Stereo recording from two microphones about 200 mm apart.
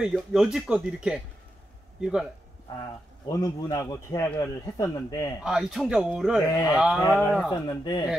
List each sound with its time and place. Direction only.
0.0 s speech: centre (ahead or behind)
3.3 s speech: 15° left (ahead or behind)
5.4 s speech: centre (ahead or behind)
7.6 s speech: 20° left (ahead or behind)